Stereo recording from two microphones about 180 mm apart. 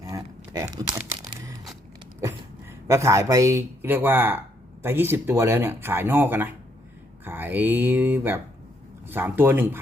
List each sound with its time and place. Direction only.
0.0 s a sound: 20° right (ahead or behind)
0.9 s crumpling: 15° right (ahead or behind)
2.8 s speech: 15° right (ahead or behind)